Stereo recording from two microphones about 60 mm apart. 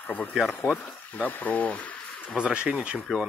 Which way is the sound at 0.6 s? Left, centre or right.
Left.